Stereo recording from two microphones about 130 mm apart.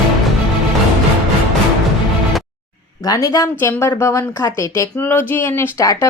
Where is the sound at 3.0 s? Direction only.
25° left (ahead or behind).